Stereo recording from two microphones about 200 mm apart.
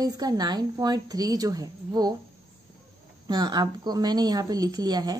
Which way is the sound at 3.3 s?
20° right (ahead or behind).